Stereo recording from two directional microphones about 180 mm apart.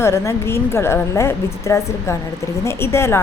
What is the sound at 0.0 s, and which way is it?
A woman's voice, 15° left (ahead or behind).